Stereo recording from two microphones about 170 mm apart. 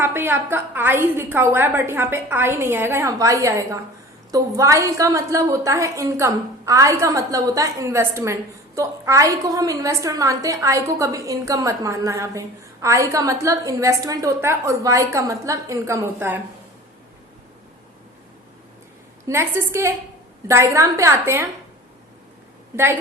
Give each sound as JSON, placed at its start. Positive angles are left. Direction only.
{"t": 0.0, "sound": "a woman's voice", "side_deg": -10}
{"t": 19.3, "sound": "a woman's voice", "side_deg": -15}
{"t": 22.7, "sound": "a woman's voice", "side_deg": -15}